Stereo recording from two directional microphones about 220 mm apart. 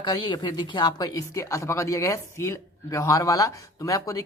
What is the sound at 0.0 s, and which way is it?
Speech, 20° left (ahead or behind).